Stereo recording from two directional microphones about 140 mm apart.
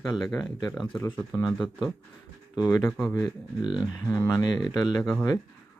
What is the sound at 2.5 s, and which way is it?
Speech, 30° left (ahead or behind).